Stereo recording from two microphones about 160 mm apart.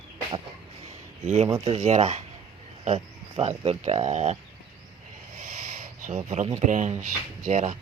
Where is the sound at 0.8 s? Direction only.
40° right (ahead or behind).